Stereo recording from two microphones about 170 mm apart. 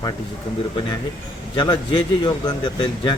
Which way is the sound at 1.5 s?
30° left (ahead or behind).